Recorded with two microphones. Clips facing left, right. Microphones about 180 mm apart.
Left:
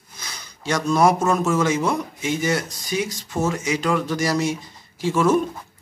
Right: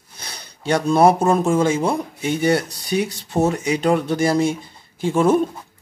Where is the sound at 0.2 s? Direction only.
30° right (ahead or behind).